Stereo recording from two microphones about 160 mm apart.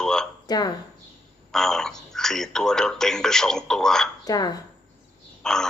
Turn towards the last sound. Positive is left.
turn(degrees=5)  # may be behind; listen again after turning